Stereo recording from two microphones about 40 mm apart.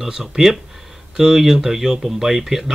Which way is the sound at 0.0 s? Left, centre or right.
Centre.